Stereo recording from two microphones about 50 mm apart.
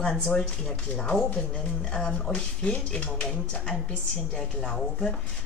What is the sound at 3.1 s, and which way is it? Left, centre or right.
Speech, centre.